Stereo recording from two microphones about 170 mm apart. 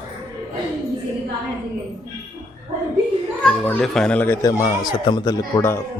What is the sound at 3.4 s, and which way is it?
A man's voice, 5° left (ahead or behind).